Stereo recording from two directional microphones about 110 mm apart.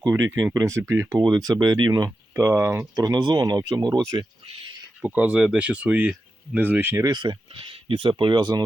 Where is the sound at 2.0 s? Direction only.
20° right (ahead or behind).